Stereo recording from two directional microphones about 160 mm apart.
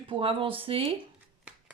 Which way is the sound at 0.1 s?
35° right (ahead or behind).